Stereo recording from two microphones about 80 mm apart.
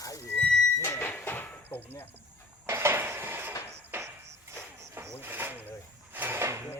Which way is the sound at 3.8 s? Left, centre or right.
Right.